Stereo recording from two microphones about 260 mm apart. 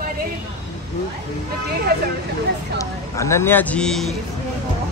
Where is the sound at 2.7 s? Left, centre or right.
Centre.